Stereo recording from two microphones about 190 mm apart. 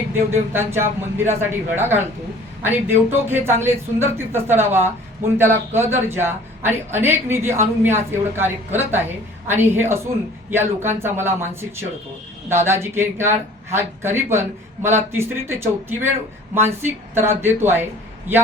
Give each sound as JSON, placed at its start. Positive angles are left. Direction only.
{"t": 0.1, "sound": "a man's voice", "side_deg": -10}